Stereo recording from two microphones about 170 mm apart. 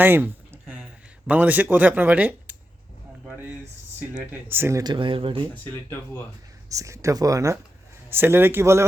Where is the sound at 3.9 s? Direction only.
10° right (ahead or behind); by 5.5 s 30° right (ahead or behind).